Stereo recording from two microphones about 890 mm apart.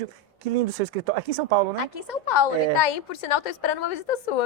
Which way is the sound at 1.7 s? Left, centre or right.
Left.